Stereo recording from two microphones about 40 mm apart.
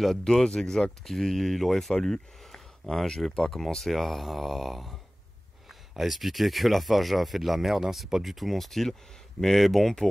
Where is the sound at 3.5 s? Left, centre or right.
Centre.